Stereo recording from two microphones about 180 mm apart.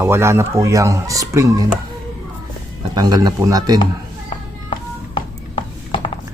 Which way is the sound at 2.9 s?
20° right (ahead or behind).